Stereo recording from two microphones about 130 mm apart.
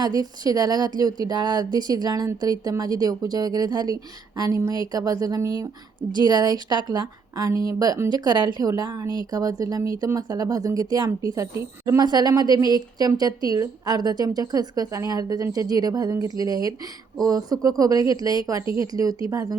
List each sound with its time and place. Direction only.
0.0 s speech: 30° right (ahead or behind)